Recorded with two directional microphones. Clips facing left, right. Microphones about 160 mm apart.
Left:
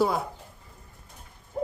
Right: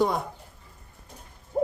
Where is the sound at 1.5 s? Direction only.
30° right (ahead or behind).